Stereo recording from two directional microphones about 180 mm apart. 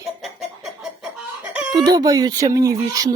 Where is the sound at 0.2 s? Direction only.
Centre (ahead or behind).